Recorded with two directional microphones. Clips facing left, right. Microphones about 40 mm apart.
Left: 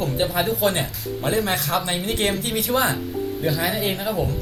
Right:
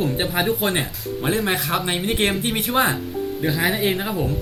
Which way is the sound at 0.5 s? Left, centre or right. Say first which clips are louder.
Left 1 dB; right.